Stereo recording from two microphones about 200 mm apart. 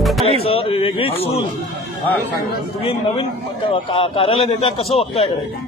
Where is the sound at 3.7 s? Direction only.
25° left (ahead or behind).